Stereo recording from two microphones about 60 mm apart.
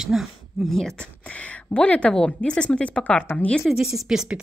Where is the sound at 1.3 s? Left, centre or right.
Left.